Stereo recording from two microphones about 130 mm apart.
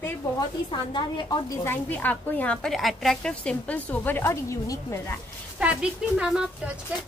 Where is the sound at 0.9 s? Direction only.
35° left (ahead or behind).